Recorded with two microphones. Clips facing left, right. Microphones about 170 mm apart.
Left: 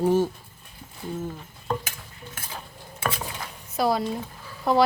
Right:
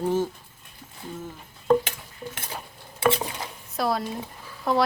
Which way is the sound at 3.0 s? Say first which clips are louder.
Right 6 dB; 20° right (ahead or behind).